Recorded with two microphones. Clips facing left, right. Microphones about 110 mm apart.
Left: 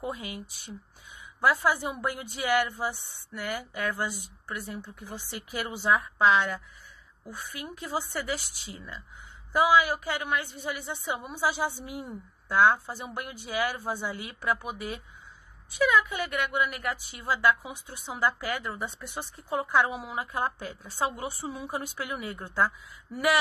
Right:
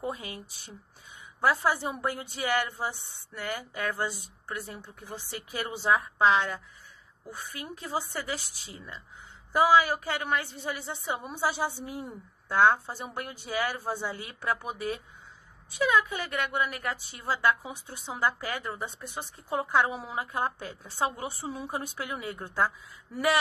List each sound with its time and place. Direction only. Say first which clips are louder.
0.0 s a woman's voice: even; 30° right (ahead or behind)